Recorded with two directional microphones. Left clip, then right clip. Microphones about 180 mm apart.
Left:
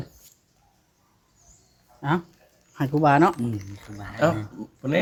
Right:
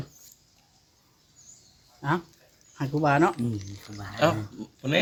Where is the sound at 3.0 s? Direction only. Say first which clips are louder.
Left 4 dB; 45° left (ahead or behind).